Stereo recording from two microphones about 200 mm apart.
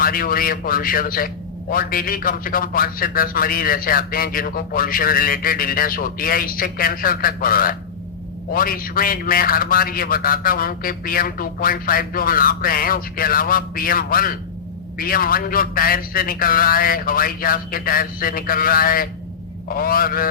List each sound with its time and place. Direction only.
0.0 s a man's voice: 45° left (ahead or behind)